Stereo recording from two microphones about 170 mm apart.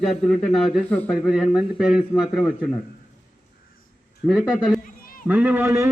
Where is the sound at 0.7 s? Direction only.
5° left (ahead or behind).